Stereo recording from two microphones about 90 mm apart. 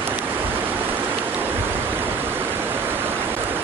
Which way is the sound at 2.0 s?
25° right (ahead or behind).